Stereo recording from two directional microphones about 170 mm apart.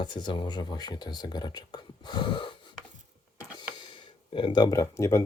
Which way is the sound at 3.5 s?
25° left (ahead or behind).